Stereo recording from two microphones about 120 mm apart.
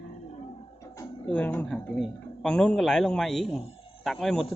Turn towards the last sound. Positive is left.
turn(degrees=0)  # may be behind; listen again after turning